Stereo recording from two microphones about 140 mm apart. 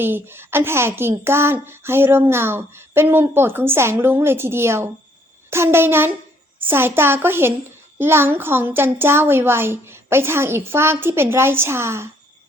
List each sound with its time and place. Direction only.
0.0 s a woman's voice: 15° right (ahead or behind)